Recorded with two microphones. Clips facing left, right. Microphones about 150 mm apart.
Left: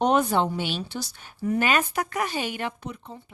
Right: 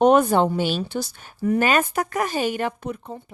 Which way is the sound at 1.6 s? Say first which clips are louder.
Right 3 dB; 45° right (ahead or behind).